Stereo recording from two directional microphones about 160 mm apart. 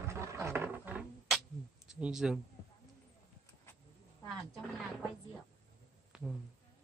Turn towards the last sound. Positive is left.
turn(degrees=-5)  # may be behind; listen again after turning